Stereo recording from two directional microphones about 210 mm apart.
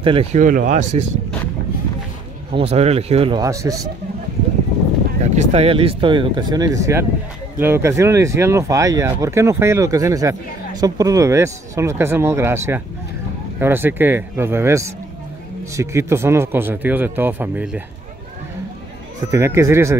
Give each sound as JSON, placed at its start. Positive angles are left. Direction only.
{"t": 0.0, "sound": "speech", "side_deg": -25}
{"t": 2.5, "sound": "speech", "side_deg": -30}
{"t": 5.2, "sound": "speech", "side_deg": -30}
{"t": 19.3, "sound": "speech", "side_deg": -15}